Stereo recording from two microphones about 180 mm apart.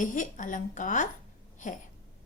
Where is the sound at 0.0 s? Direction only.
45° left (ahead or behind).